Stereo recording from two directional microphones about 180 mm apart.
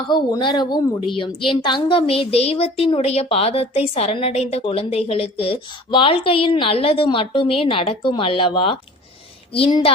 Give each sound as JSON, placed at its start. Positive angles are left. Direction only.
{"t": 0.1, "sound": "a woman's voice", "side_deg": 25}